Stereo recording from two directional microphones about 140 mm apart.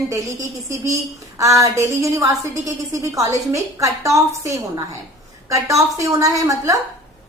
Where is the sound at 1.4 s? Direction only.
25° right (ahead or behind).